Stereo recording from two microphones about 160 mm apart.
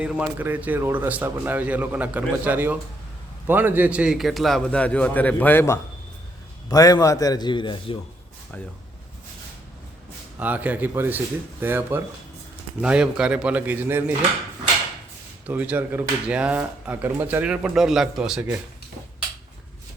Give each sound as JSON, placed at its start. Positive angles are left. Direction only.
{"t": 0.0, "sound": "a man's voice", "side_deg": -10}
{"t": 10.4, "sound": "speech", "side_deg": -10}
{"t": 15.4, "sound": "speech", "side_deg": -10}